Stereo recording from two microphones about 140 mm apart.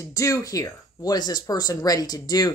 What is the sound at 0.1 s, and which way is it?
Speech, 25° left (ahead or behind).